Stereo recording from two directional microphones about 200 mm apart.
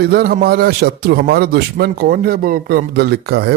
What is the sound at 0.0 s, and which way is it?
A man's voice, 50° right (ahead or behind).